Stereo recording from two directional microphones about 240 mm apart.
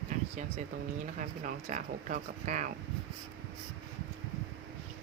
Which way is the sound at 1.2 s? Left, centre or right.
Right.